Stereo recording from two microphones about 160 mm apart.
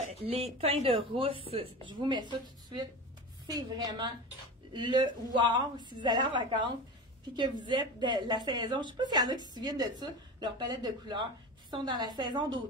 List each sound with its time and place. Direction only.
0.0 s speech: 40° right (ahead or behind)
3.5 s a woman's voice: 25° right (ahead or behind)